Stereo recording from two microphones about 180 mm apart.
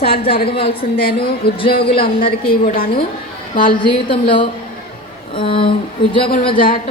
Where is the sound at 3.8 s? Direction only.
30° left (ahead or behind).